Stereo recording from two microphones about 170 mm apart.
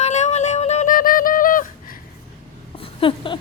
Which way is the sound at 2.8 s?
30° left (ahead or behind).